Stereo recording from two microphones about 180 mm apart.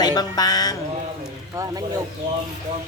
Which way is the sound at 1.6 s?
20° right (ahead or behind).